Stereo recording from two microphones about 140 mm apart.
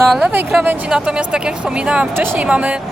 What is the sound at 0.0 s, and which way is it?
Speech, centre (ahead or behind).